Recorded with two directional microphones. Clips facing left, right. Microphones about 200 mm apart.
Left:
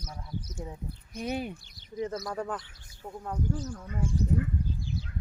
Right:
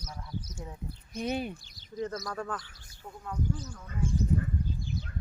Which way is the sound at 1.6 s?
60° left (ahead or behind).